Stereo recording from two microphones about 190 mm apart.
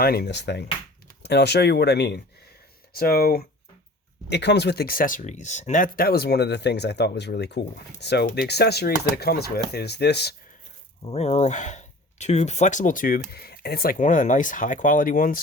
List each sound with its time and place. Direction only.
0.0 s speech: 55° left (ahead or behind)
11.0 s speech: 35° left (ahead or behind)